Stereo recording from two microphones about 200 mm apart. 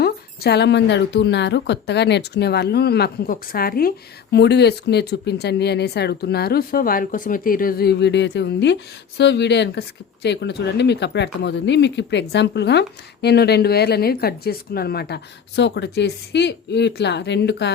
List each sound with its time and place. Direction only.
0.0 s a woman's voice: 55° left (ahead or behind)